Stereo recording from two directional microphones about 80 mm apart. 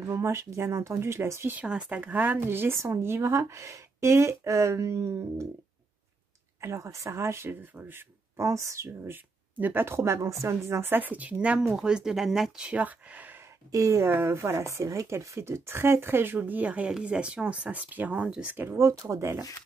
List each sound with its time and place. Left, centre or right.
0.0 s speech: right
1.5 s speech: centre; by 5.5 s right
6.6 s speech: right
9.9 s speech: right; by 12.6 s centre
12.6 s speech: centre
13.7 s speech: right
14.0 s speech: right
18.8 s speech: right